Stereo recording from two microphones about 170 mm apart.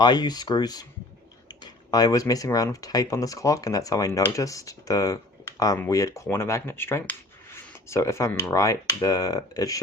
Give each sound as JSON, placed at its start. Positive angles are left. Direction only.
{"t": 0.0, "sound": "speech", "side_deg": 25}